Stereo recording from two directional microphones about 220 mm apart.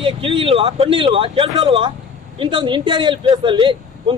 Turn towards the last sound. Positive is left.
turn(degrees=-20)  # may be behind; listen again after turning